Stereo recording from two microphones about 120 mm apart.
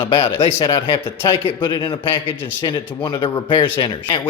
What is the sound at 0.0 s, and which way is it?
A man's voice, 45° left (ahead or behind).